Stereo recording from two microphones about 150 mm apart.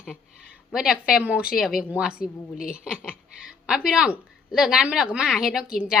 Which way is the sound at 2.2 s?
75° left (ahead or behind).